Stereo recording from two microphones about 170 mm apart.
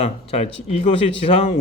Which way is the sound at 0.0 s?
35° left (ahead or behind).